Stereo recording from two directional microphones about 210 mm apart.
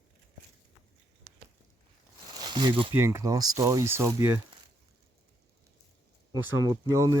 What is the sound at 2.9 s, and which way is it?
Speech, 10° right (ahead or behind).